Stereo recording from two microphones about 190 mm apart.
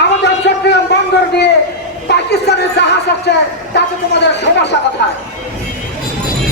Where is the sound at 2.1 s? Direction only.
60° left (ahead or behind).